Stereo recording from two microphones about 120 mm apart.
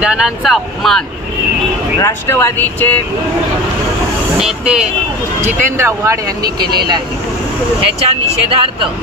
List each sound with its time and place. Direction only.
0.0 s speech: 5° right (ahead or behind)
2.0 s speech: 25° left (ahead or behind)
4.4 s speech: 5° right (ahead or behind)
5.4 s speech: 25° right (ahead or behind)
7.8 s speech: 55° right (ahead or behind)